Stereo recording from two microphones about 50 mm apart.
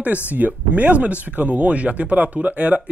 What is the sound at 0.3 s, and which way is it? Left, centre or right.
Speech, right.